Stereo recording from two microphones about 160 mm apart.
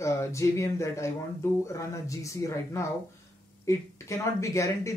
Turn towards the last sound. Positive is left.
turn(degrees=20)  # may be behind; listen again after turning